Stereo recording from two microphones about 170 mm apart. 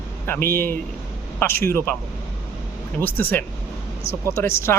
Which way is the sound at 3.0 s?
10° left (ahead or behind).